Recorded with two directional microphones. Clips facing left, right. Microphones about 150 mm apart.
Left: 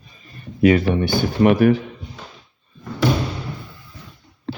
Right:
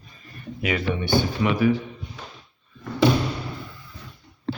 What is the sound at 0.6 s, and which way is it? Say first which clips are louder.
Speech: left 10 dB; 45° left (ahead or behind).